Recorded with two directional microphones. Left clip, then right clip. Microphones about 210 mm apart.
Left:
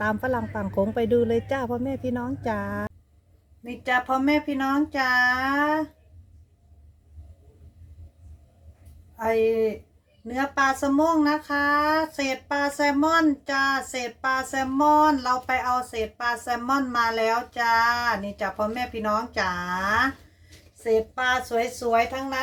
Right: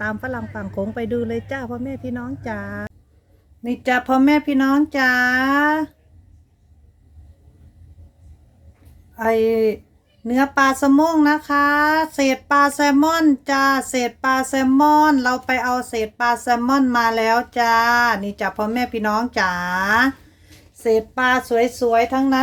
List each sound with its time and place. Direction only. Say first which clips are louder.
0.0 s speech: even; centre (ahead or behind)
3.6 s speech: right 5 dB; 45° right (ahead or behind)
9.1 s speech: right 5 dB; 45° right (ahead or behind)